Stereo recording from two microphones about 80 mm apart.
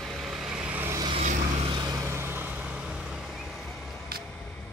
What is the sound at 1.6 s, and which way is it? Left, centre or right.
Vehicle, right.